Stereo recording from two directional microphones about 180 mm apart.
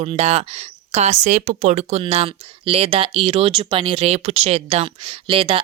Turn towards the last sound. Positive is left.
turn(degrees=-30)  # may be behind; listen again after turning